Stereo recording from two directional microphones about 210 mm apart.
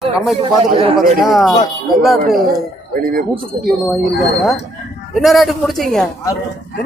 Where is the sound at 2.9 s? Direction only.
45° right (ahead or behind).